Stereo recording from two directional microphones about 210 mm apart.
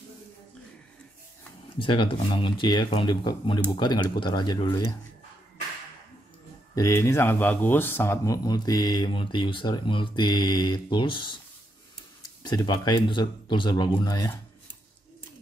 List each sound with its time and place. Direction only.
1.8 s speech: 25° left (ahead or behind)
6.7 s speech: 15° left (ahead or behind)